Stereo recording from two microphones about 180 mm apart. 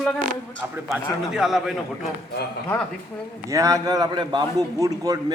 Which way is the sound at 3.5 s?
20° right (ahead or behind).